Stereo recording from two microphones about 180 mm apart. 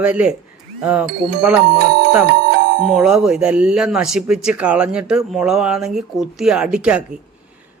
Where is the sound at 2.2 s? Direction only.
60° right (ahead or behind).